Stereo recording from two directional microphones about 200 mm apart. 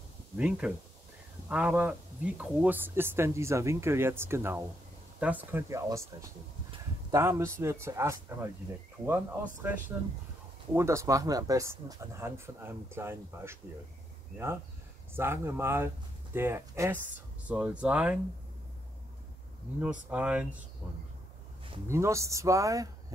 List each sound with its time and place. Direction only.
0.4 s speech: 5° right (ahead or behind)
7.1 s speech: 15° right (ahead or behind)
9.6 s speech: 10° right (ahead or behind)
15.1 s speech: 10° right (ahead or behind)
19.8 s speech: 5° right (ahead or behind)
21.8 s speech: 15° right (ahead or behind)